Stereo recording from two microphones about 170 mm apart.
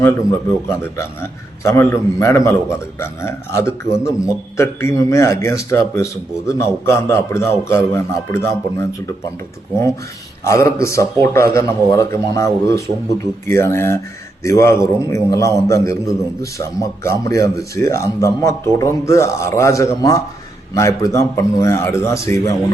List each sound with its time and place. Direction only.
0.0 s a man's voice: 15° left (ahead or behind)
10.4 s a man's voice: 15° left (ahead or behind)